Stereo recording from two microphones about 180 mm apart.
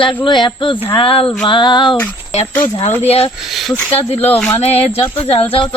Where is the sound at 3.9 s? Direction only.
35° left (ahead or behind).